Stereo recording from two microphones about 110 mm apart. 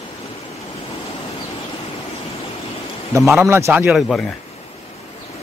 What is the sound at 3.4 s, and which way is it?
Speech, 25° right (ahead or behind).